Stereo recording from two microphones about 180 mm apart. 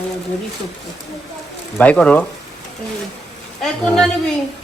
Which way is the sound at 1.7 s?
10° left (ahead or behind).